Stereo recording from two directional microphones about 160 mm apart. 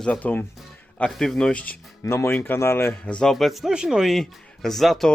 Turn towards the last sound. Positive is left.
turn(degrees=0)  # may be behind; listen again after turning